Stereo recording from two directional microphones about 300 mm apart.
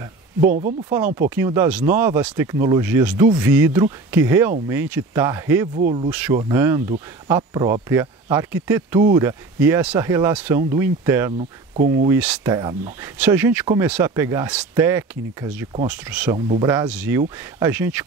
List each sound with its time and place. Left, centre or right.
0.4 s speech: right
1.3 s speech: centre
5.8 s speech: right
6.0 s speech: centre
11.3 s speech: right
12.1 s speech: centre